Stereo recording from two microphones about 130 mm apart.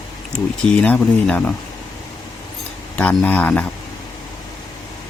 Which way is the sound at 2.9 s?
10° left (ahead or behind).